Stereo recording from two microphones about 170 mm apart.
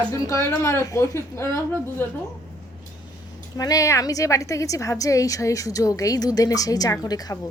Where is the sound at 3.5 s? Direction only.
20° left (ahead or behind).